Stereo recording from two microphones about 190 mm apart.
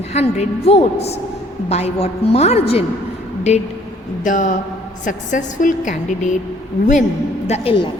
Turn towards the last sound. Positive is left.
turn(degrees=30)  # may be behind; listen again after turning